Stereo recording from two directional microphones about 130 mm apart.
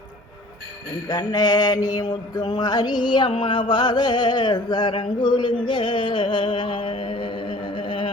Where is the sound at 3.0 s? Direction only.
40° left (ahead or behind).